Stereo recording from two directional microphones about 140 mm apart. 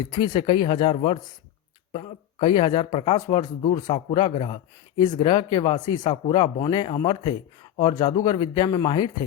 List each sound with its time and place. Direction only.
0.0 s speech: 35° left (ahead or behind)
3.2 s speech: 30° left (ahead or behind)